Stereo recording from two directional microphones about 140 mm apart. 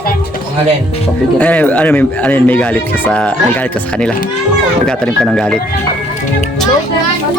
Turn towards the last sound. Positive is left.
turn(degrees=0)  # may be behind; listen again after turning